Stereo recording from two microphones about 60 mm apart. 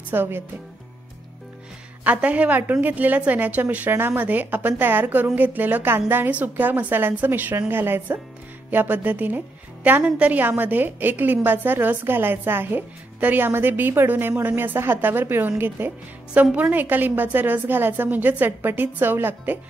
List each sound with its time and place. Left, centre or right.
0.1 s a woman's voice: right
2.0 s a woman's voice: right